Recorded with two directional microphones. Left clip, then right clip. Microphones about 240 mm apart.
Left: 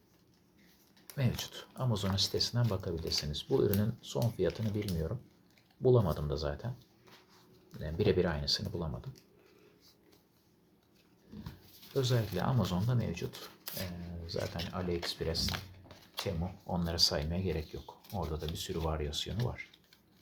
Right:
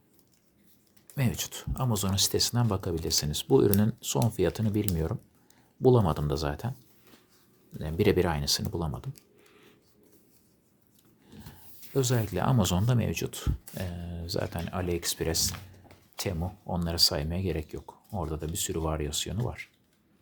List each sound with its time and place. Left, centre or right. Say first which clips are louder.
1.1 s speech: right 5 dB; right
5.8 s speech: right 5 dB; right
7.8 s speech: right 5 dB; right
11.9 s speech: right 5 dB; right
16.2 s speech: right 5 dB; right